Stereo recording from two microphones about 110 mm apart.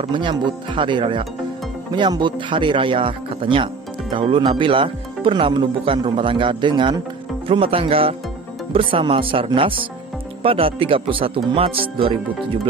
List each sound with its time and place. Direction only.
0.1 s speech: 45° right (ahead or behind)
7.4 s speech: 55° right (ahead or behind)